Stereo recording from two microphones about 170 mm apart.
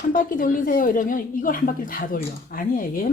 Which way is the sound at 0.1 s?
55° left (ahead or behind).